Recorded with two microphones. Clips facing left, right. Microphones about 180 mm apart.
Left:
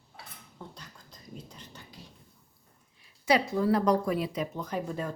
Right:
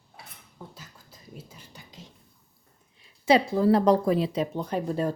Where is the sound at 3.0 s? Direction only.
25° right (ahead or behind).